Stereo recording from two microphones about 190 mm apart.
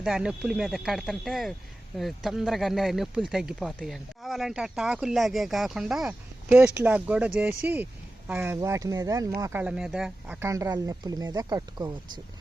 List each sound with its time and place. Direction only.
0.0 s speech: 5° right (ahead or behind); by 12.2 s 20° right (ahead or behind)